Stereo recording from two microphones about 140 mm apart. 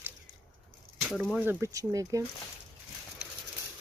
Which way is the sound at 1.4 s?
15° right (ahead or behind).